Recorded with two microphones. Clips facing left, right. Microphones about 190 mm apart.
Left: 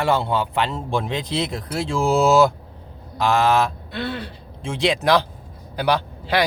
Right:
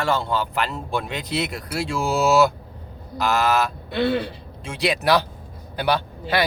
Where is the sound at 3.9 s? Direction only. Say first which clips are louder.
Right 6 dB; 65° right (ahead or behind).